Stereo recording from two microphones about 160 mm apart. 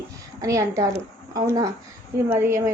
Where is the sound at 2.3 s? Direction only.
15° right (ahead or behind).